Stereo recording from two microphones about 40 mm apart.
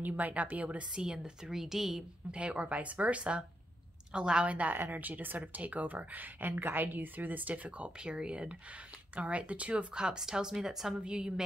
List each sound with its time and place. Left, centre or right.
0.0 s speech: right
0.9 s a woman's voice: centre
2.3 s speech: right
4.5 s speech: right
4.7 s a woman's voice: right
5.4 s speech: right
9.9 s a woman's voice: centre
11.0 s speech: right